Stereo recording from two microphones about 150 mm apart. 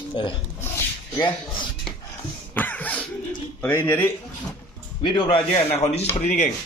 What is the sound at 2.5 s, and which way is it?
Cough, 10° left (ahead or behind).